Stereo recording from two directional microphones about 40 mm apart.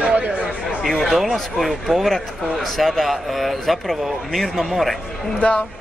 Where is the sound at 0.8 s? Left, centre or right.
Centre.